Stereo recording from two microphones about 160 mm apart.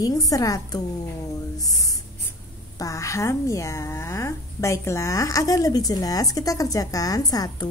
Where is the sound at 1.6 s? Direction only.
20° left (ahead or behind).